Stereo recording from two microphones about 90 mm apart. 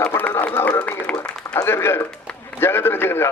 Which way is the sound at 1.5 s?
30° left (ahead or behind).